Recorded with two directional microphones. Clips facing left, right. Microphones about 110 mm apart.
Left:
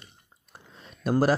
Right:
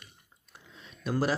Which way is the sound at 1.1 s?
40° left (ahead or behind).